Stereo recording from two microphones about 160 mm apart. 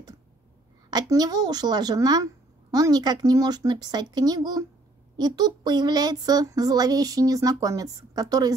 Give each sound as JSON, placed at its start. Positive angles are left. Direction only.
{"t": 0.8, "sound": "speech", "side_deg": -25}